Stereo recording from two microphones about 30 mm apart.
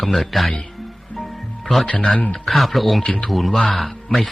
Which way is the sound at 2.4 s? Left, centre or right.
Centre.